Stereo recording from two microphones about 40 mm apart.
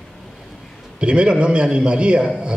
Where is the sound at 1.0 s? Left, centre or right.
Right.